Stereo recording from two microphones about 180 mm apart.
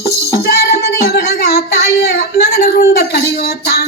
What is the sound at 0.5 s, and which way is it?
Child singing, 60° left (ahead or behind).